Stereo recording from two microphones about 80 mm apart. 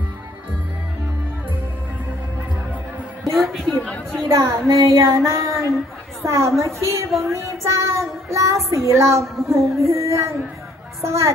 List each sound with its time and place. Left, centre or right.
3.3 s a woman's voice: centre
4.3 s female singing: right
5.3 s a sound: right
6.2 s child singing: right